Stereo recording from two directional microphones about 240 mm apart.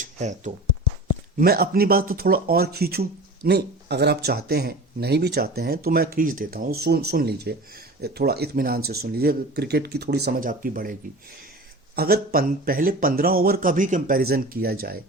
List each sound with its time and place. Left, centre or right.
0.0 s speech: right
11.9 s speech: right